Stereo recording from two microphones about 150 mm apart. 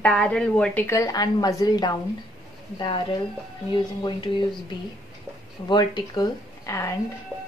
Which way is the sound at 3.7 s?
30° left (ahead or behind).